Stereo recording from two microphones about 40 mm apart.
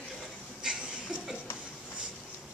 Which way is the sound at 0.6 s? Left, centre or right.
Centre.